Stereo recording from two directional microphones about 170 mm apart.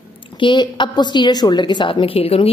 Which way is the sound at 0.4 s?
30° left (ahead or behind).